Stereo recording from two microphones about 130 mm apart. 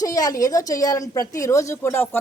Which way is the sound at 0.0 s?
30° left (ahead or behind).